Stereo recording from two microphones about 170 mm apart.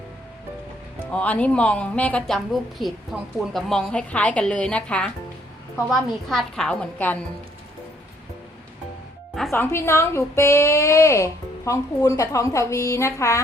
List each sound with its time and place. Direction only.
1.1 s a woman's voice: 5° left (ahead or behind)
9.5 s a woman's voice: 15° left (ahead or behind)